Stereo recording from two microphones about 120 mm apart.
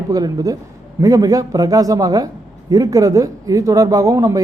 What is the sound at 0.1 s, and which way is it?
Speech, 30° right (ahead or behind).